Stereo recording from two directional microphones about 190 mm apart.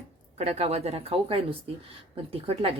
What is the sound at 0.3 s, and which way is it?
Speech, 35° right (ahead or behind).